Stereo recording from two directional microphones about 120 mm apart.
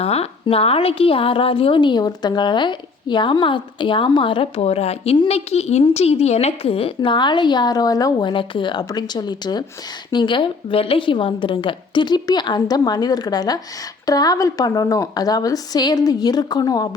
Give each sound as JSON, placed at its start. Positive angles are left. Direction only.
{"t": 0.0, "sound": "a woman's voice", "side_deg": 55}